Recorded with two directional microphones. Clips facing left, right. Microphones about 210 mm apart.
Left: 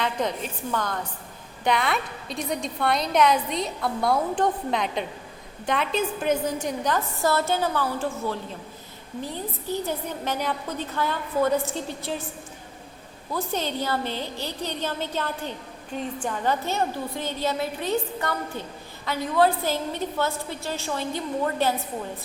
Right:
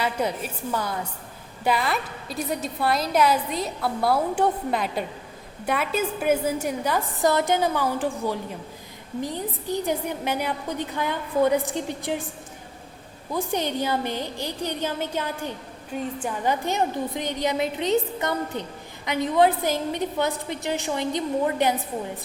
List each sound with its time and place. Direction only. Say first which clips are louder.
0.0 s a woman's voice: right 1 dB; 10° right (ahead or behind)
9.6 s a woman's voice: right 3 dB; 15° right (ahead or behind)
13.3 s a woman's voice: right 2 dB; 15° right (ahead or behind)